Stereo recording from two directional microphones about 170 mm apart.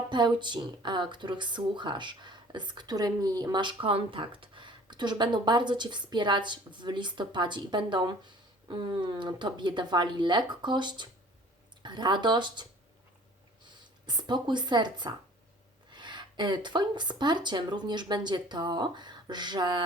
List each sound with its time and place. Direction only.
0.1 s speech: 25° right (ahead or behind)
14.1 s speech: 25° right (ahead or behind)